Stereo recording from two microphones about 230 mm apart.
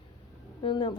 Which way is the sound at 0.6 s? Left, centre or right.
Left.